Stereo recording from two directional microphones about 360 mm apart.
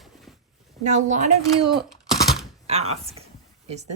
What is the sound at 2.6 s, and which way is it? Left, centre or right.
Speech, centre.